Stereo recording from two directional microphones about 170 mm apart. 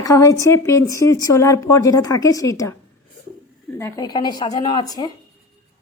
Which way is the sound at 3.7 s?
20° left (ahead or behind).